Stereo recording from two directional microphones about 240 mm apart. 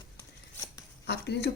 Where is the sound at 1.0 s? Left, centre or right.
Left.